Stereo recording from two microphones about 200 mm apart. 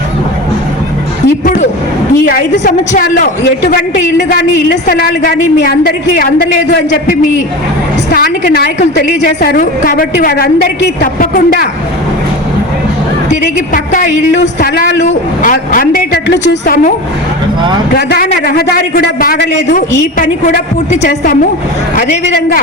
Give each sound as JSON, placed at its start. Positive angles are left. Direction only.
{"t": 2.2, "sound": "a man's voice", "side_deg": 45}
{"t": 13.3, "sound": "a man's voice", "side_deg": 40}
{"t": 17.9, "sound": "a man's voice", "side_deg": 50}
{"t": 21.9, "sound": "a man's voice", "side_deg": 45}